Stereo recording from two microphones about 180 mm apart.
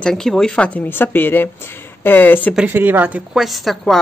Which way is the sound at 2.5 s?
10° right (ahead or behind).